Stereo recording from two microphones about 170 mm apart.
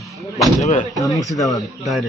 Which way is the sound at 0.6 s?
45° left (ahead or behind).